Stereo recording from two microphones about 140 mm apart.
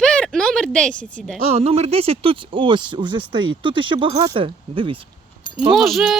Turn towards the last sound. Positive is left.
turn(degrees=0)  # may be behind; listen again after turning